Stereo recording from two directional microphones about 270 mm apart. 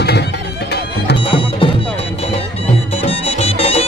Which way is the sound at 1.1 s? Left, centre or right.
Centre.